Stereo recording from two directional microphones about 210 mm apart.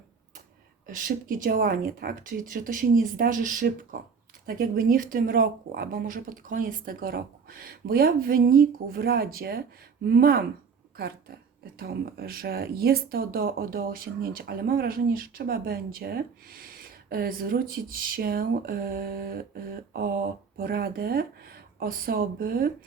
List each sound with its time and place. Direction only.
0.9 s speech: 40° right (ahead or behind)